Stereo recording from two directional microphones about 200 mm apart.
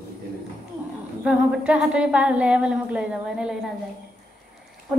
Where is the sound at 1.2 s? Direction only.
5° right (ahead or behind).